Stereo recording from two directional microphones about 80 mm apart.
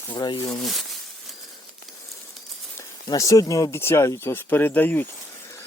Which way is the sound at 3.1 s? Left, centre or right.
Left.